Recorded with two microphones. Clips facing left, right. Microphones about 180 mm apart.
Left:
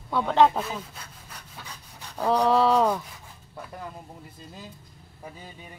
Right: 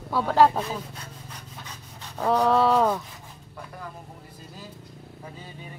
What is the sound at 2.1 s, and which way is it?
Speech, centre (ahead or behind).